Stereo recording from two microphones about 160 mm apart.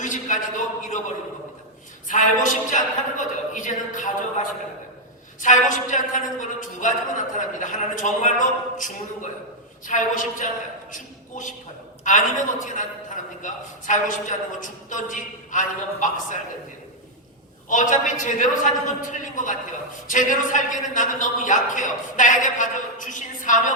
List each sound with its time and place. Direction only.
0.0 s a man's voice: 50° left (ahead or behind)
2.0 s a man's voice: 50° left (ahead or behind)
5.4 s a man's voice: 50° left (ahead or behind)
12.0 s a man's voice: 55° left (ahead or behind)
17.7 s a man's voice: 55° left (ahead or behind)